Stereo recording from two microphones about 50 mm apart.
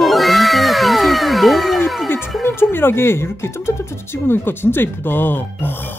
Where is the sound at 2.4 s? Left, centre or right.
Left.